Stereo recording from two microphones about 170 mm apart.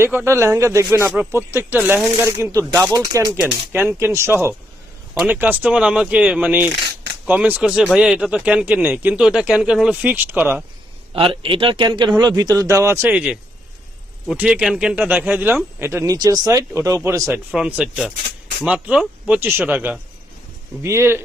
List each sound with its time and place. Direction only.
0.0 s a man's voice: 15° right (ahead or behind)
11.1 s a man's voice: 30° right (ahead or behind); by 21.2 s 15° right (ahead or behind)